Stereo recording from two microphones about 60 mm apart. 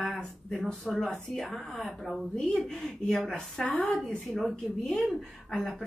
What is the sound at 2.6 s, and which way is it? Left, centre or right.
A woman's voice, centre.